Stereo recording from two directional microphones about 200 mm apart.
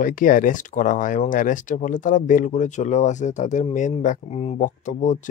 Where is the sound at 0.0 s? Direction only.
45° left (ahead or behind).